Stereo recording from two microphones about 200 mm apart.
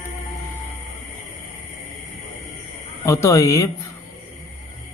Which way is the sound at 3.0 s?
15° left (ahead or behind).